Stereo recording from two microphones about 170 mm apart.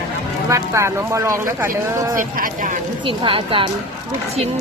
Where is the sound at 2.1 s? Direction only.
50° right (ahead or behind).